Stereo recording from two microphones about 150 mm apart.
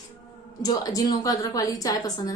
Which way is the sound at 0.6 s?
25° left (ahead or behind).